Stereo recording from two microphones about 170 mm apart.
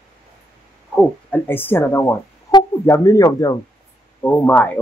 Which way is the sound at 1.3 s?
10° left (ahead or behind).